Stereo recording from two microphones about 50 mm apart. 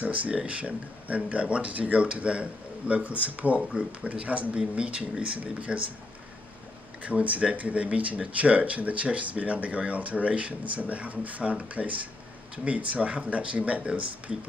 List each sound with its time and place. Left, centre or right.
0.0 s speech: right
7.0 s speech: right